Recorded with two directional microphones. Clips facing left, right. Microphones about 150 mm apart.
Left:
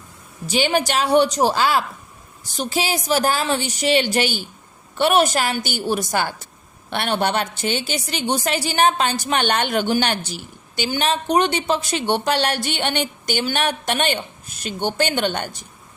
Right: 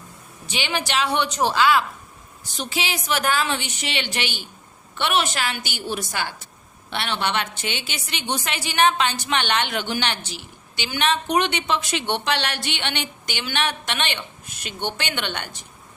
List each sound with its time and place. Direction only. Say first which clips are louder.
0.4 s a woman's voice: left 8 dB; 40° left (ahead or behind)